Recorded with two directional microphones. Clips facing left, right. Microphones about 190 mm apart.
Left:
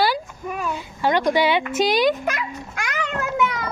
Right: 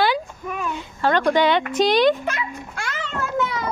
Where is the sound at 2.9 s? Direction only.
15° left (ahead or behind).